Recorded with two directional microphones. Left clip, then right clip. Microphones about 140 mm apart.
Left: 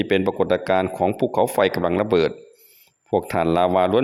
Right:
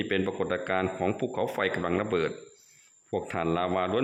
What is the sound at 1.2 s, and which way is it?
A man's voice, 40° left (ahead or behind).